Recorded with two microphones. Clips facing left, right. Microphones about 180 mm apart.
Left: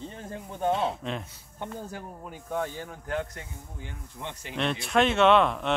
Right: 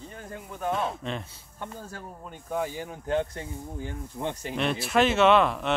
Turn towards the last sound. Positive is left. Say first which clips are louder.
# even
turn(degrees=0)  # may be behind; listen again after turning